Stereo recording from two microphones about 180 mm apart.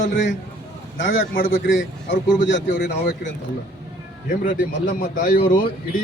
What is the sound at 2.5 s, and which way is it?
Speech, 70° left (ahead or behind).